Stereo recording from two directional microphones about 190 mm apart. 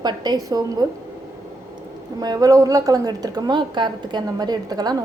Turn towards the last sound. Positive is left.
turn(degrees=-20)  # may be behind; listen again after turning